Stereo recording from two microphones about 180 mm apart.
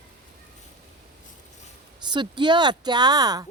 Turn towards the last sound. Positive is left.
turn(degrees=-20)  # may be behind; listen again after turning